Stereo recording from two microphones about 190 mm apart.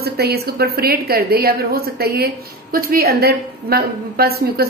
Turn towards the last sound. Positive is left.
turn(degrees=-55)  # may be behind; listen again after turning